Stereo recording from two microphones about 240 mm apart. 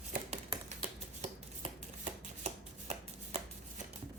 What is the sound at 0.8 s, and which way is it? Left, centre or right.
Shuffling cards, right.